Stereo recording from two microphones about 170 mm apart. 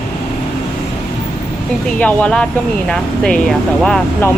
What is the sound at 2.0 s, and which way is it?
Speech, 10° left (ahead or behind).